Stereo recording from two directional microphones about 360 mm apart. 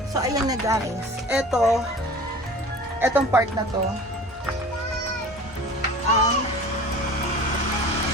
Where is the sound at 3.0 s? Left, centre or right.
Centre.